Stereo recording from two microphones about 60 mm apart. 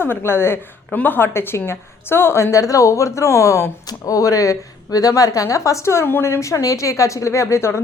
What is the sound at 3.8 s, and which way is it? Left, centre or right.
Speech, left.